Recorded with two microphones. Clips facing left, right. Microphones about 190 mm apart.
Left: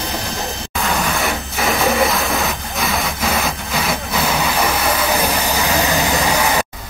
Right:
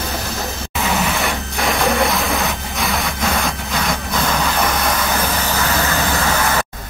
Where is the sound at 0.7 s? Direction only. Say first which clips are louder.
Even; centre (ahead or behind); by 6.6 s 15° left (ahead or behind).